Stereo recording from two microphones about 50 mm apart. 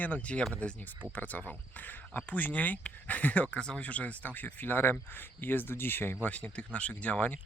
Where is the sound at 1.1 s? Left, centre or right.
Left.